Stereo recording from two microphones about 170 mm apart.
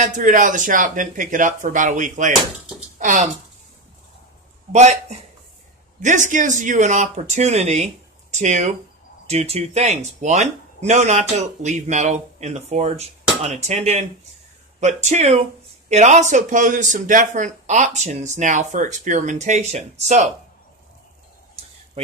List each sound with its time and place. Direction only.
0.0 s speech: 50° right (ahead or behind)
4.7 s speech: 40° right (ahead or behind)
22.0 s speech: 35° right (ahead or behind)